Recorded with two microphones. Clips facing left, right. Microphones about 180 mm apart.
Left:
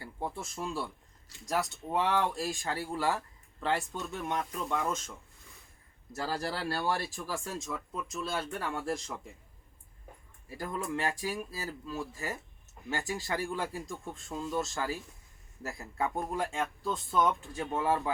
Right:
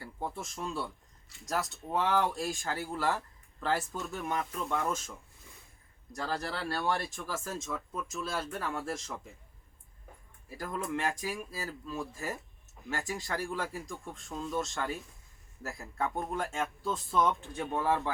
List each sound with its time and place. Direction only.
0.0 s speech: centre (ahead or behind)
6.1 s speech: 5° left (ahead or behind)
10.5 s speech: centre (ahead or behind)